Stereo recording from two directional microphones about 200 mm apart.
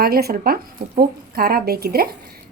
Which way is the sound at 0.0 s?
50° right (ahead or behind).